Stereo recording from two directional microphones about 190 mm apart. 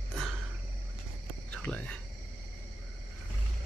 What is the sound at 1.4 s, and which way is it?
Speech, 5° left (ahead or behind).